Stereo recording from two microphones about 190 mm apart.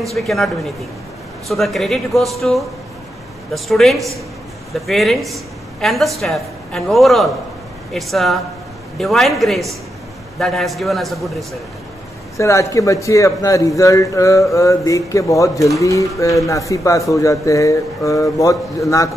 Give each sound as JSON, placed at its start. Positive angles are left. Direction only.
{"t": 0.1, "sound": "a man's voice", "side_deg": 0}
{"t": 1.5, "sound": "a man's voice", "side_deg": 0}
{"t": 12.4, "sound": "a man's voice", "side_deg": 15}